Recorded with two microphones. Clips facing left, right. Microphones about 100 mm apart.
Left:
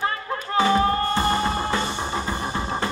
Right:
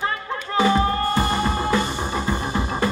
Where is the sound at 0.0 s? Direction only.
30° left (ahead or behind).